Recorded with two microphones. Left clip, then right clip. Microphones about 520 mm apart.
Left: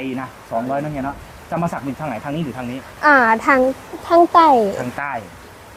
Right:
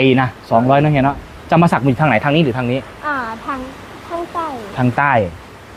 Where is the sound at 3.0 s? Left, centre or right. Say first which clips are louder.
Left 9 dB; left.